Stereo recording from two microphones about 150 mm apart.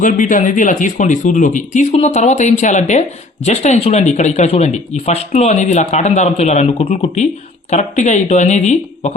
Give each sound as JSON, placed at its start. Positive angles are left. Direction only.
{"t": 0.0, "sound": "speech", "side_deg": 60}